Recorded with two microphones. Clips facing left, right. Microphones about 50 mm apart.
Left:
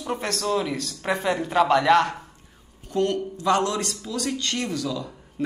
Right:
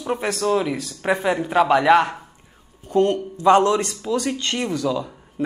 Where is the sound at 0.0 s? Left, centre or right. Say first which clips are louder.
Right 5 dB; centre.